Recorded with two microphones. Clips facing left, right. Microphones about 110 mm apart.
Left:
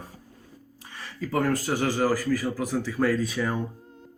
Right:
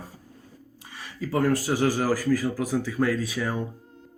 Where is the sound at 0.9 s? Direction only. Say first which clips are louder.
Right 1 dB; 15° right (ahead or behind).